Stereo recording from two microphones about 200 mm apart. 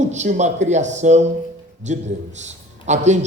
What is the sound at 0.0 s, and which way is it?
A man's voice, 35° right (ahead or behind).